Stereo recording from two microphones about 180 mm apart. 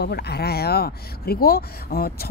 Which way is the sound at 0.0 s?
65° left (ahead or behind).